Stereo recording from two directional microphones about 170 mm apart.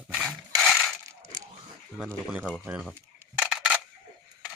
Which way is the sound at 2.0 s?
5° right (ahead or behind).